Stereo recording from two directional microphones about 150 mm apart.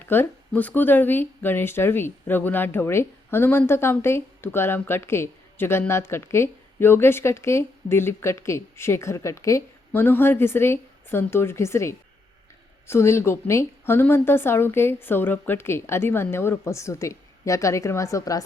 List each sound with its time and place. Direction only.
0.0 s speech: 15° left (ahead or behind)